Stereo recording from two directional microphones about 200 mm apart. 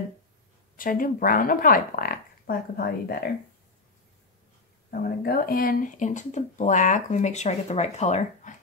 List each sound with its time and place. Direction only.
0.7 s speech: 45° left (ahead or behind)
4.9 s speech: 45° left (ahead or behind)